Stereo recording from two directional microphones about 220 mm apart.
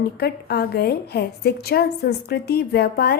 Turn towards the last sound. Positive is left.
turn(degrees=45)  # may be behind; listen again after turning